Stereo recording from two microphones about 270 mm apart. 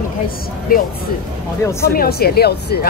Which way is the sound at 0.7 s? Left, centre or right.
Left.